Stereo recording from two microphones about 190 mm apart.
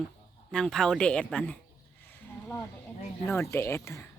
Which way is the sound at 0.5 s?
Centre (ahead or behind).